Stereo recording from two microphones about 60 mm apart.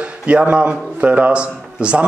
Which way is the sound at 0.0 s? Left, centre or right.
Right.